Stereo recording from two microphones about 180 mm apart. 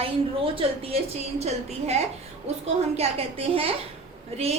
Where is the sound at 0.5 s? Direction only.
30° right (ahead or behind).